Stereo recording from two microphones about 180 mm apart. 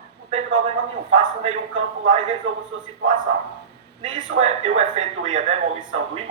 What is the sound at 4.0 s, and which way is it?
Speech, 35° right (ahead or behind).